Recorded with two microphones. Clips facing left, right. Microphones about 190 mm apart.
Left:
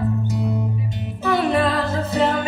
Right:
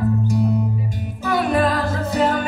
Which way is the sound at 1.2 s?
25° left (ahead or behind).